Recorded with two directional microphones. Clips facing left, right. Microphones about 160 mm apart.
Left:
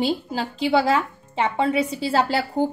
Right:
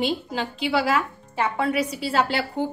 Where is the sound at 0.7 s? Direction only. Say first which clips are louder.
Left 3 dB; 25° left (ahead or behind).